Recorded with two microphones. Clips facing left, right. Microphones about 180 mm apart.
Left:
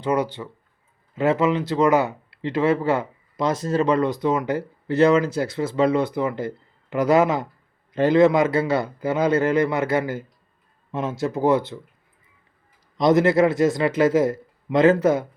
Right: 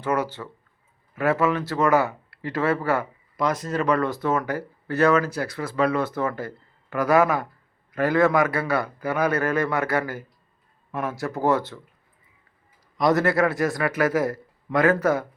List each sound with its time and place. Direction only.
0.0 s speech: 15° left (ahead or behind)
13.0 s speech: 20° left (ahead or behind)